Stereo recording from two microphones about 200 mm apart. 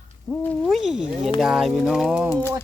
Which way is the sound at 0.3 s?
5° left (ahead or behind).